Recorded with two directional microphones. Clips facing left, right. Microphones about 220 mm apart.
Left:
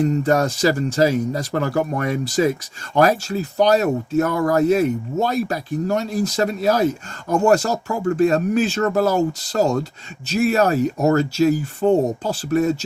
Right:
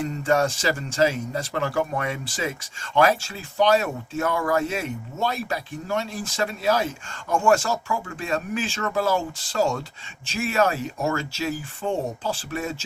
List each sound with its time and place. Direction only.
0.0 s speech: 40° left (ahead or behind)